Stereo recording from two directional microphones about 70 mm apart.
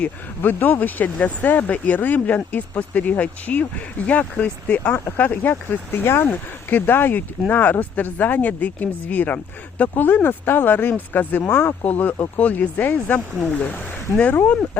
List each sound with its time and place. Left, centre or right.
0.0 s speech: left